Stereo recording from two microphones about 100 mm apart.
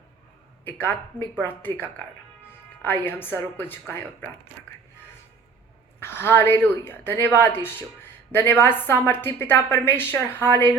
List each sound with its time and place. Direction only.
0.6 s a woman's voice: 20° left (ahead or behind)
2.8 s a woman's voice: 20° left (ahead or behind)
6.0 s a woman's voice: 25° left (ahead or behind)